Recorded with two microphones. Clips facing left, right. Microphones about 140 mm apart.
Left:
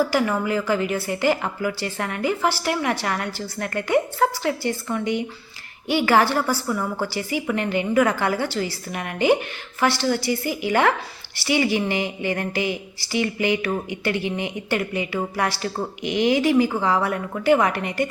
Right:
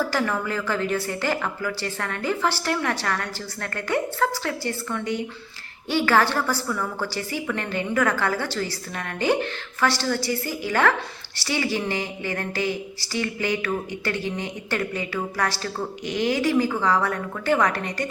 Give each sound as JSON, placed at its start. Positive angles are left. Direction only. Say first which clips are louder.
{"t": 0.0, "sound": "speech", "louder": "left 4 dB", "side_deg": 15}